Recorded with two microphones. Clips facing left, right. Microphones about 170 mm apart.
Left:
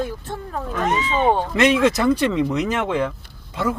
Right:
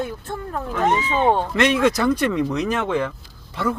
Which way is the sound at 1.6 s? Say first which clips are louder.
Left 3 dB; 20° left (ahead or behind).